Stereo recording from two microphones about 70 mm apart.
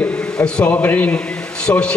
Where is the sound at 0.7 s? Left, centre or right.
Left.